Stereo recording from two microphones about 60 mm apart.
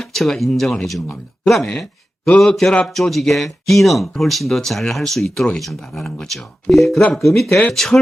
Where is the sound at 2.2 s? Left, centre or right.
Centre.